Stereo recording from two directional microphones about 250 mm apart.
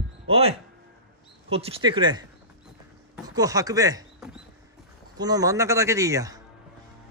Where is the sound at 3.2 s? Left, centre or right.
Centre.